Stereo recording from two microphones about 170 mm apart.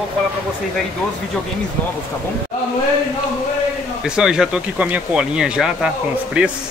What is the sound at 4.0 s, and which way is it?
Speech, 5° right (ahead or behind).